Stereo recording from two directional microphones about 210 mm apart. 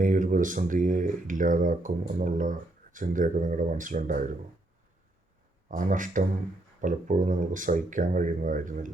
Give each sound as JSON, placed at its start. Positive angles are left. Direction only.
{"t": 0.0, "sound": "speech", "side_deg": -40}
{"t": 5.7, "sound": "speech", "side_deg": -40}